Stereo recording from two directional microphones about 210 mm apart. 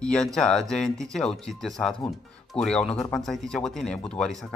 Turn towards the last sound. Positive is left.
turn(degrees=5)  # may be behind; listen again after turning